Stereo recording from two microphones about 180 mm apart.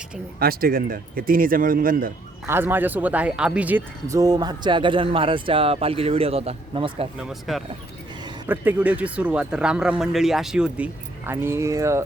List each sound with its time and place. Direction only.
0.3 s speech: 55° right (ahead or behind)
2.5 s speech: 10° right (ahead or behind); by 7.1 s 30° right (ahead or behind)
7.2 s speech: centre (ahead or behind)